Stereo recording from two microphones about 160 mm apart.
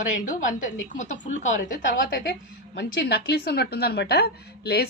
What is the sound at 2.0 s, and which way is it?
Speech, 65° left (ahead or behind).